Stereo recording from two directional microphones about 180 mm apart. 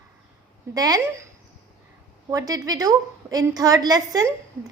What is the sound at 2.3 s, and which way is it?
A woman's voice, 20° right (ahead or behind).